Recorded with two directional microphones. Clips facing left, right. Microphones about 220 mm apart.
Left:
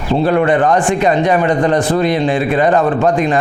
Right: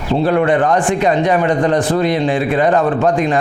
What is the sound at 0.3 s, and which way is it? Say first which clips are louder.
A man's voice: left 1 dB; 20° left (ahead or behind).